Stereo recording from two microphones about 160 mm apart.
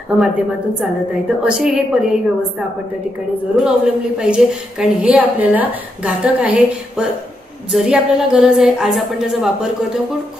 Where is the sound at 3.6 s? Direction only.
5° right (ahead or behind).